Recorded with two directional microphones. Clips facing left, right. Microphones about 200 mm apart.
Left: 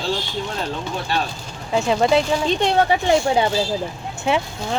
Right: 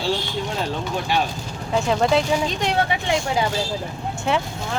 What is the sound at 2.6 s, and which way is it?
Speech, 35° left (ahead or behind).